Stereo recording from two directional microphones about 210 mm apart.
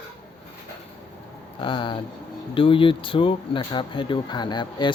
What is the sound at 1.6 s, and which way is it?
Speech, 25° left (ahead or behind).